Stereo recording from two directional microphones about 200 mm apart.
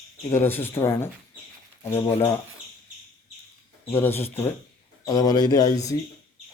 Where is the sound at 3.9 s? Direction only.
10° left (ahead or behind).